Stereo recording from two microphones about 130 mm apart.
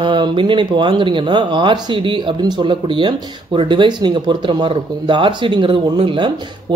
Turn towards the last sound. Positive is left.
turn(degrees=-40)  # may be behind; listen again after turning